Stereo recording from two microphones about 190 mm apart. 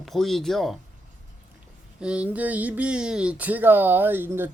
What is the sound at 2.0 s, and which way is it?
Speech, 5° right (ahead or behind).